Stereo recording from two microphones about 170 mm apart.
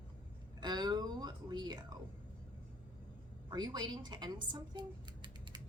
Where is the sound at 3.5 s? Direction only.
25° right (ahead or behind).